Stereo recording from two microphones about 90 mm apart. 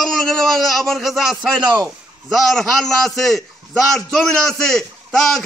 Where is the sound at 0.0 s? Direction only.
5° left (ahead or behind).